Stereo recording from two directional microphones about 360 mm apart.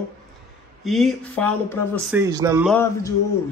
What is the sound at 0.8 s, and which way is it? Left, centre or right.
Speech, centre.